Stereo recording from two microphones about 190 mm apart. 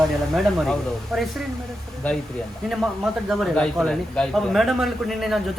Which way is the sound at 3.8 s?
5° left (ahead or behind).